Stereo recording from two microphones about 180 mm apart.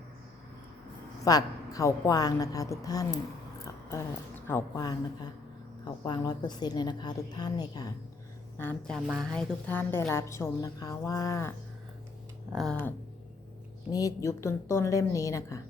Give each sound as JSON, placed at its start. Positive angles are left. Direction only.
{"t": 1.2, "sound": "a woman's voice", "side_deg": 20}
{"t": 8.5, "sound": "a woman's voice", "side_deg": 10}
{"t": 9.0, "sound": "a woman's voice", "side_deg": 0}
{"t": 13.9, "sound": "a woman's voice", "side_deg": 20}